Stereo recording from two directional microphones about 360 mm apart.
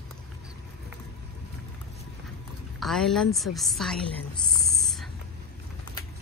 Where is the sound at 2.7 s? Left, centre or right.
Centre.